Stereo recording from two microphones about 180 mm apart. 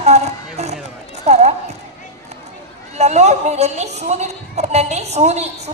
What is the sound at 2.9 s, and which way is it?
A woman's voice, 40° right (ahead or behind).